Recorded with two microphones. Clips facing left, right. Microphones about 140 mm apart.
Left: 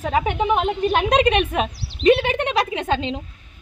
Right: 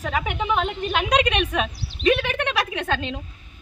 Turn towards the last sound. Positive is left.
turn(degrees=20)  # may be behind; listen again after turning